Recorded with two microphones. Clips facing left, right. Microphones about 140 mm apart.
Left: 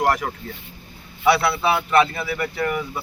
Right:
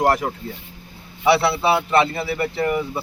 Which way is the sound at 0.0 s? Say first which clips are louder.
Right 2 dB; 30° right (ahead or behind).